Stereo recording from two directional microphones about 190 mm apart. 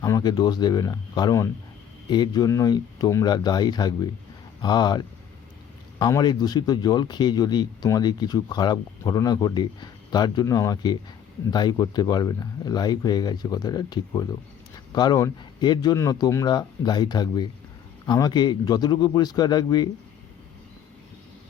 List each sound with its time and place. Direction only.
0.0 s speech: 20° left (ahead or behind)